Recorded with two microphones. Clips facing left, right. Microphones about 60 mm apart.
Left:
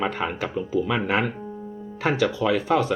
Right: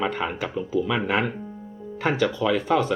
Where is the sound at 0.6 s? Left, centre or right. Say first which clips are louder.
Even; left.